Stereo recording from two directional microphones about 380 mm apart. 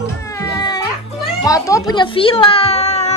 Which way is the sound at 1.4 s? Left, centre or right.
Centre.